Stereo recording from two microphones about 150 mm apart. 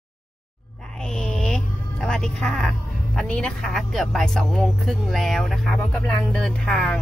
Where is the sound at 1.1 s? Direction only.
5° left (ahead or behind).